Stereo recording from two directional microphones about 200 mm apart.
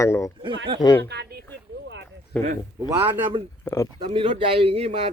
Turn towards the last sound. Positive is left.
turn(degrees=-30)  # may be behind; listen again after turning